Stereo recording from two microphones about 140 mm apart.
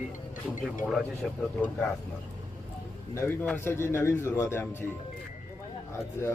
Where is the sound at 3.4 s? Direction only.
15° left (ahead or behind).